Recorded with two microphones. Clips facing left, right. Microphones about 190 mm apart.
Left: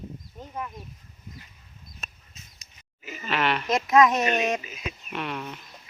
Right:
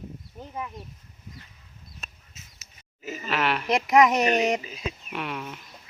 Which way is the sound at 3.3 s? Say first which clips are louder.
Even; 5° right (ahead or behind).